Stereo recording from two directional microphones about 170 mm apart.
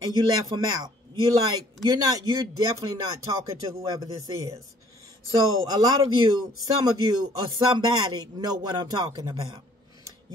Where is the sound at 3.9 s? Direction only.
20° right (ahead or behind).